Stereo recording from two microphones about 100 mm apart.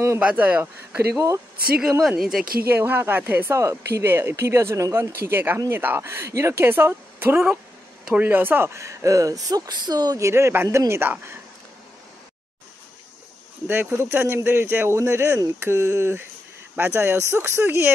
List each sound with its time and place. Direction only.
0.2 s speech: 15° right (ahead or behind)
1.1 s speech: 30° right (ahead or behind)
2.0 s speech: 5° right (ahead or behind)
2.7 s speech: 20° right (ahead or behind)
5.1 s speech: 20° right (ahead or behind)
13.7 s speech: 25° right (ahead or behind)